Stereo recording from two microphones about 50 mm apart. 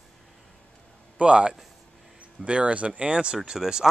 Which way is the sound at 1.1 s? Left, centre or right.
Right.